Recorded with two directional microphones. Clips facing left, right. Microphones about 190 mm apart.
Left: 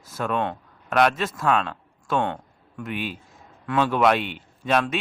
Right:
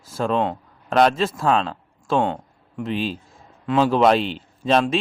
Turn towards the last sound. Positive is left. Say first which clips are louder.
# right 4 dB
turn(degrees=-30)  # may be behind; listen again after turning